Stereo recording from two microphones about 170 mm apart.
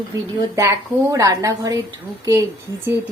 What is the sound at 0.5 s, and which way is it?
A woman's voice, 20° right (ahead or behind).